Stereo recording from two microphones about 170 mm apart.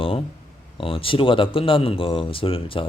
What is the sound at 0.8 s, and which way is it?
Speech, 30° left (ahead or behind).